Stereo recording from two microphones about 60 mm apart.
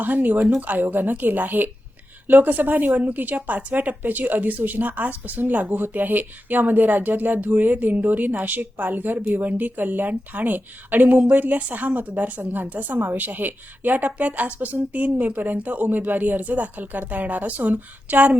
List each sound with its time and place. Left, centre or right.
0.0 s speech: right